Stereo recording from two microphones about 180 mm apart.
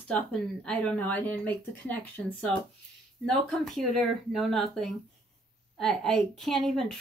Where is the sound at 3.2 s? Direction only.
Centre (ahead or behind).